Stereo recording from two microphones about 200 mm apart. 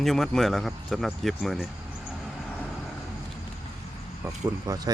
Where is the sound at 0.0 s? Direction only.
Centre (ahead or behind).